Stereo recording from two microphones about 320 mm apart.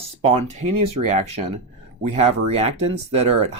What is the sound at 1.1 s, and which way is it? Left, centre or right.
Speech, right.